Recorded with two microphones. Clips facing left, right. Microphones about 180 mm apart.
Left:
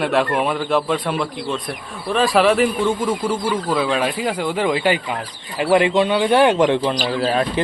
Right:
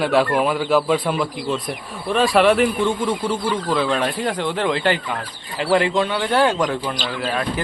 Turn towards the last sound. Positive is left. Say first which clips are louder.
# left 4 dB
turn(degrees=35)  # may be behind; listen again after turning